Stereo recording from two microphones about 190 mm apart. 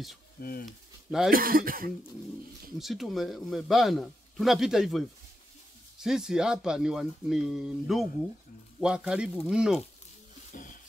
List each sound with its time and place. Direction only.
0.4 s speech: 50° left (ahead or behind)
0.7 s speech: centre (ahead or behind)
1.3 s speech: 50° right (ahead or behind)
2.8 s a man's voice: centre (ahead or behind)
10.5 s music: 45° left (ahead or behind)